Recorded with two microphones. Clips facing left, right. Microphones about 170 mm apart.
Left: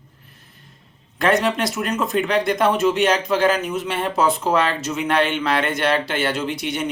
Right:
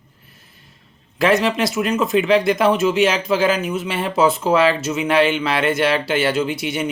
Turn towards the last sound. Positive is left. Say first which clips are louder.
# right 3 dB
turn(degrees=-5)  # may be behind; listen again after turning